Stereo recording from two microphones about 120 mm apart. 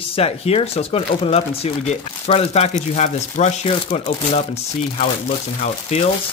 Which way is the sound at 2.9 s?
70° left (ahead or behind).